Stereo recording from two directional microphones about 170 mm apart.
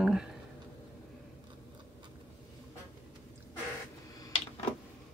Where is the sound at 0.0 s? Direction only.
5° right (ahead or behind).